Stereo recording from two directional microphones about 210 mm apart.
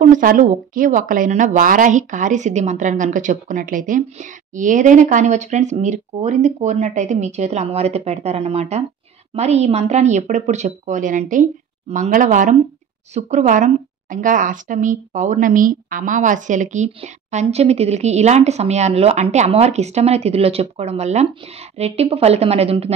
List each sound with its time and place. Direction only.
0.0 s a woman's voice: 40° right (ahead or behind)